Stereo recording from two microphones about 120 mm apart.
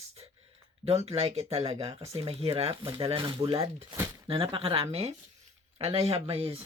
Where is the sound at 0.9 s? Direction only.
60° right (ahead or behind).